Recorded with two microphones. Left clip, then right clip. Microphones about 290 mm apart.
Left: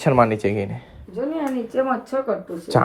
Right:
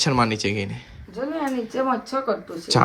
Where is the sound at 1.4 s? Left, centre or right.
Centre.